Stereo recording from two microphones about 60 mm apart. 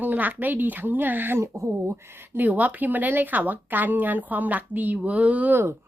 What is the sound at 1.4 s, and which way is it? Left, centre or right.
Speech, right.